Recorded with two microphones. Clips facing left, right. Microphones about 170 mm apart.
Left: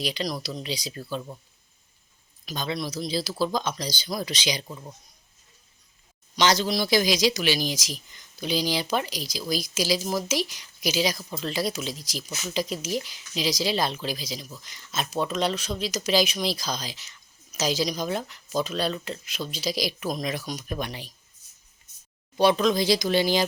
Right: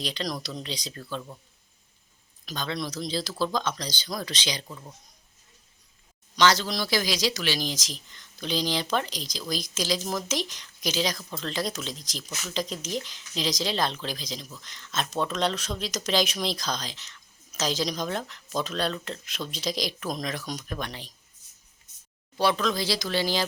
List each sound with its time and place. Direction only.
0.0 s speech: 5° left (ahead or behind)
2.5 s speech: 10° left (ahead or behind)
6.3 s speech: 15° left (ahead or behind)
22.4 s speech: 15° left (ahead or behind)